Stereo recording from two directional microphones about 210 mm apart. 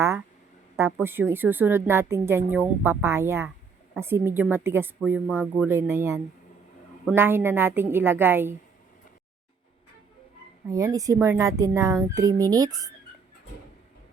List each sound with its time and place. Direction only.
0.8 s a woman's voice: 10° right (ahead or behind)
10.7 s a woman's voice: 15° right (ahead or behind)